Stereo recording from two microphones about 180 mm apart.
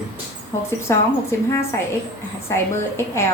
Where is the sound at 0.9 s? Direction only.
15° left (ahead or behind).